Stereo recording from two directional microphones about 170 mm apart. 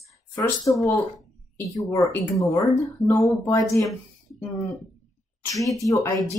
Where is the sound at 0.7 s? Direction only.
20° left (ahead or behind).